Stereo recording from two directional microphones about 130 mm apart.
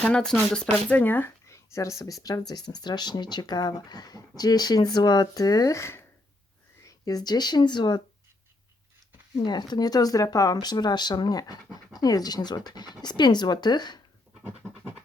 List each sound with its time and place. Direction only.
0.0 s speech: 5° left (ahead or behind); by 8.0 s 35° left (ahead or behind)
9.4 s speech: 35° left (ahead or behind)